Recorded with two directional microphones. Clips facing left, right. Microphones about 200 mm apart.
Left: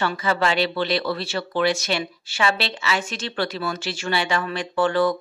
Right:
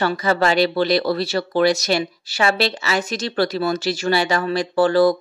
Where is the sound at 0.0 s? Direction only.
40° right (ahead or behind).